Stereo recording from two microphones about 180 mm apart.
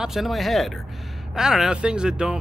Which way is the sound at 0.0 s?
Centre (ahead or behind).